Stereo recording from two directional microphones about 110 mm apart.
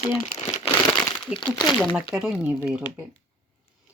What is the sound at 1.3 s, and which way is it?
Speech, 10° right (ahead or behind).